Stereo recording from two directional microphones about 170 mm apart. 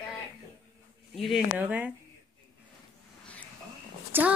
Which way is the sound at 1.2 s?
5° right (ahead or behind).